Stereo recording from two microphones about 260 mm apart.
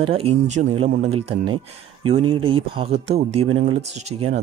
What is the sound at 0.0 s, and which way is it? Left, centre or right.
Speech, right.